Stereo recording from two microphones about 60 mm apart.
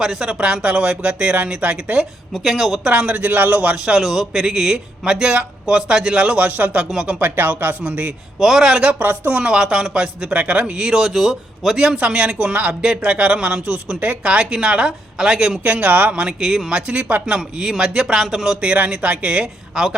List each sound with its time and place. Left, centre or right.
0.0 s speech: centre
2.3 s speech: centre
2.8 s speech: centre
3.8 s speech: centre
7.2 s speech: right
8.4 s speech: centre
9.0 s speech: right
9.4 s speech: centre
11.9 s speech: centre
15.6 s speech: right
16.2 s speech: centre
17.2 s speech: centre